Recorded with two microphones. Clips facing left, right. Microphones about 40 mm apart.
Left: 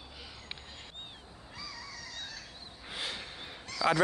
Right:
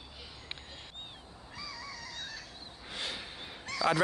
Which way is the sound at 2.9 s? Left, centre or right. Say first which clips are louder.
Even; centre.